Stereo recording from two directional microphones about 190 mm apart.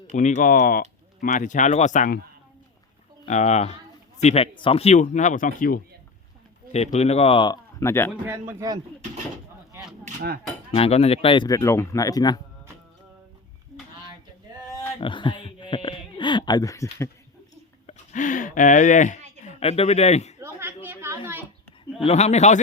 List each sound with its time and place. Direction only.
0.1 s speech: 40° left (ahead or behind)
3.2 s speech: 40° left (ahead or behind)
6.7 s speech: 35° left (ahead or behind); by 8.1 s 15° left (ahead or behind)
8.1 s speech: 10° right (ahead or behind)
10.0 s hammer: 50° right (ahead or behind)
10.7 s speech: 30° left (ahead or behind)
15.0 s speech: 25° left (ahead or behind)
17.8 s a sound: 40° left (ahead or behind)
19.4 s speech: 35° left (ahead or behind)
20.4 s a sound: 10° right (ahead or behind)
22.0 s speech: 35° left (ahead or behind)